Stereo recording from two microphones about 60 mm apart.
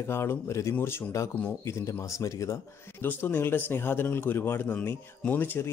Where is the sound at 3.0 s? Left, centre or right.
Left.